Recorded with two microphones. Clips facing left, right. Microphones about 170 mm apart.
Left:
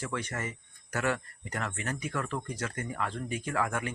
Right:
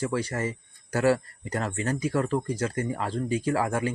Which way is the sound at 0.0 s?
35° right (ahead or behind).